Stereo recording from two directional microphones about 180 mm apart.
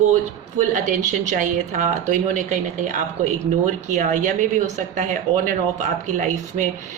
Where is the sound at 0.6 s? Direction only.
45° right (ahead or behind).